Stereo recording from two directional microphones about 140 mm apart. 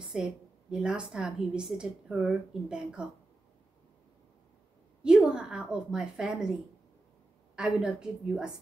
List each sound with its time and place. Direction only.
0.0 s a woman's voice: 5° right (ahead or behind)
5.0 s a woman's voice: 5° right (ahead or behind)
7.5 s a woman's voice: 5° right (ahead or behind)